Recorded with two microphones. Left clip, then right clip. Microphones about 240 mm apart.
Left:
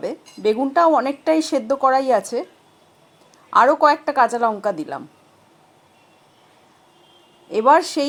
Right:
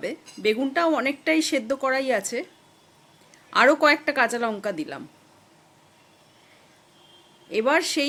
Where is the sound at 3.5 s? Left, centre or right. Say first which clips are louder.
Left 4 dB; centre.